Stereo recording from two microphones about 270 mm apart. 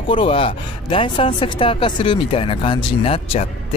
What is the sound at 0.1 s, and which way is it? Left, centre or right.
Speech, centre.